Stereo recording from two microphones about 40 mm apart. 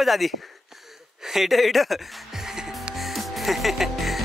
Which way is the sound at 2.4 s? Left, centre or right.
Centre.